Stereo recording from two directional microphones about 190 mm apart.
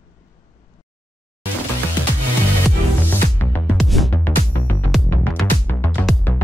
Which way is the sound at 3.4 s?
10° left (ahead or behind).